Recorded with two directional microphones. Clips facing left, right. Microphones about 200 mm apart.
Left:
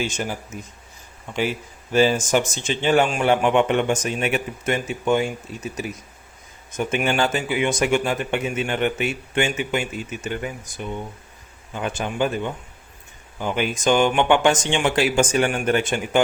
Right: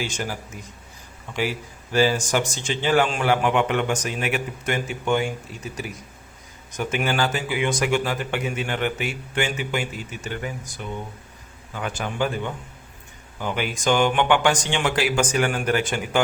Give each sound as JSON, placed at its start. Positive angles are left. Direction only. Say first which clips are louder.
{"t": 0.0, "sound": "speech", "louder": "left 3 dB", "side_deg": 20}